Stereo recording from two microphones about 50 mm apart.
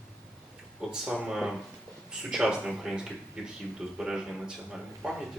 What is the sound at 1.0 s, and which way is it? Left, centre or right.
Speech, centre.